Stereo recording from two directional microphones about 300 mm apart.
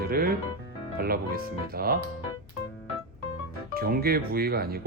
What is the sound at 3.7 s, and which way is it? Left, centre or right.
Speech, right.